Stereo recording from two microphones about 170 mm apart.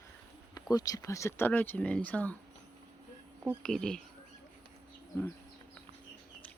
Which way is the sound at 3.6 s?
5° left (ahead or behind).